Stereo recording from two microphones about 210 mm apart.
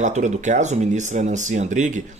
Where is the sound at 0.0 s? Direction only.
35° right (ahead or behind).